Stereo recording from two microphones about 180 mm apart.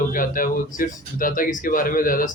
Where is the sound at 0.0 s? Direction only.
50° left (ahead or behind).